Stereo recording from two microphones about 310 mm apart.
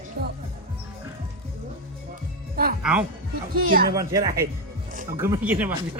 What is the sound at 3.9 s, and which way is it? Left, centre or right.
Speech, centre.